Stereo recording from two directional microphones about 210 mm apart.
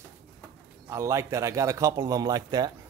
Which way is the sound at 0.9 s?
15° right (ahead or behind).